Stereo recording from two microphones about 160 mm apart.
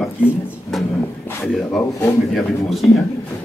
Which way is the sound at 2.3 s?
Centre (ahead or behind).